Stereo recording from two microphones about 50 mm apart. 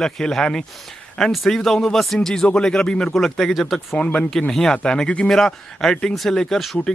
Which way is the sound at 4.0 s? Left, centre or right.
Left.